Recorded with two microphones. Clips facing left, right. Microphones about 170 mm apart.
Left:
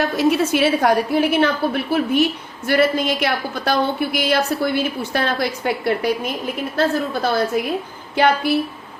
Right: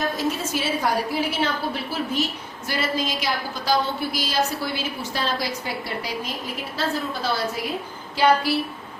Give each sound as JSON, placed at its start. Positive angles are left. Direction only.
{"t": 0.0, "sound": "a woman's voice", "side_deg": 70}